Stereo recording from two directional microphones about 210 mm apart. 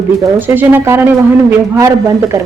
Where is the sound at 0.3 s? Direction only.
10° right (ahead or behind).